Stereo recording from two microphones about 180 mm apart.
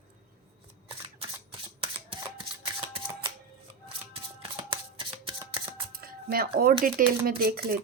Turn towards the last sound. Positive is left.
turn(degrees=-55)  # may be behind; listen again after turning